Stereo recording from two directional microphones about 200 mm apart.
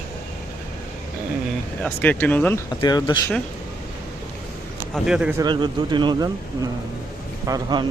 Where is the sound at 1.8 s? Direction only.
10° left (ahead or behind).